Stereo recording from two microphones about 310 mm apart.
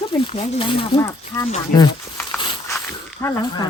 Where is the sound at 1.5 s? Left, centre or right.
Centre.